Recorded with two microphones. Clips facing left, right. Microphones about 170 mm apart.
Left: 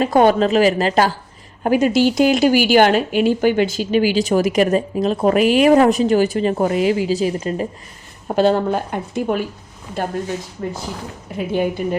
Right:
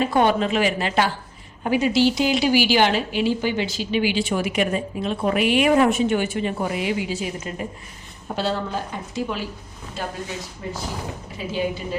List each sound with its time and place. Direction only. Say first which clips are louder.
0.0 s speech: left 5 dB; 45° left (ahead or behind)
8.4 s speech: left 9 dB; 55° left (ahead or behind)
11.3 s speech: left 6 dB; 55° left (ahead or behind)